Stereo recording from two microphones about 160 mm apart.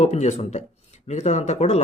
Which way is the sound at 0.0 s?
45° left (ahead or behind).